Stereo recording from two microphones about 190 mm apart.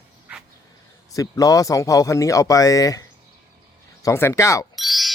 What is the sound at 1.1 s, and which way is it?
Speech, 20° left (ahead or behind).